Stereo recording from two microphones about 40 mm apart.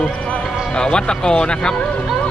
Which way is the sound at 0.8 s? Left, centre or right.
Left.